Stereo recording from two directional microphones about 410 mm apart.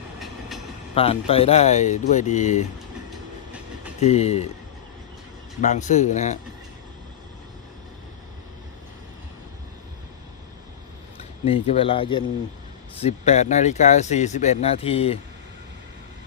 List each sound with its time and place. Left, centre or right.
0.2 s train: centre
0.9 s speech: centre
3.1 s train: centre
4.0 s speech: centre
5.5 s speech: centre
11.2 s speech: centre